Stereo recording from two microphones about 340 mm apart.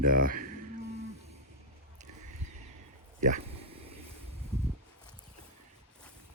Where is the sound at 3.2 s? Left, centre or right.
Right.